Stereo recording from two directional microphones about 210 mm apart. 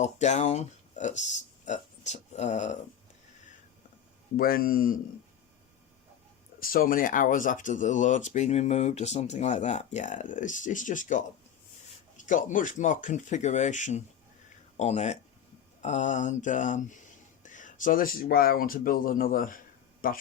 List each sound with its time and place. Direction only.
0.0 s speech: 35° left (ahead or behind)
4.4 s speech: 45° left (ahead or behind)
6.6 s speech: 45° left (ahead or behind)